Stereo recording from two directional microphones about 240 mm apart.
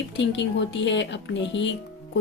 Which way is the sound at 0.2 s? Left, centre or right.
Left.